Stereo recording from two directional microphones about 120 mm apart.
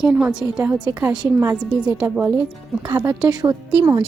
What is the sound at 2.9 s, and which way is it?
Speech, 25° right (ahead or behind).